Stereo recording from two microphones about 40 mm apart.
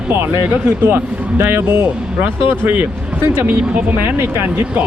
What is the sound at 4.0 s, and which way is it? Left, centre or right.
Speech, right.